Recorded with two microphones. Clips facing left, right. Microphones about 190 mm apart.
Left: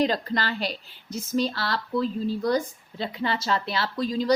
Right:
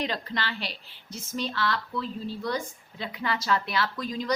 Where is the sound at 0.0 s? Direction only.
40° left (ahead or behind).